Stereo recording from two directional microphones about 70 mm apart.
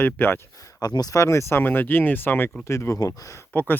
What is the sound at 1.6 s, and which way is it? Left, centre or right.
Speech, left.